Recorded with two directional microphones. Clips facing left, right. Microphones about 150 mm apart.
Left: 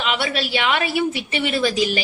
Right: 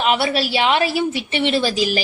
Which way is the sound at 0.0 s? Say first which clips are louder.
Right 5 dB; 35° right (ahead or behind).